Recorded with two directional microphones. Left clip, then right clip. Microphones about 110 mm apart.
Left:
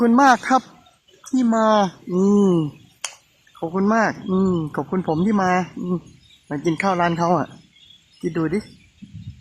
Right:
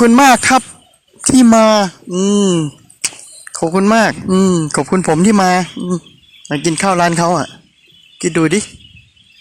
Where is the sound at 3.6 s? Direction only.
45° right (ahead or behind).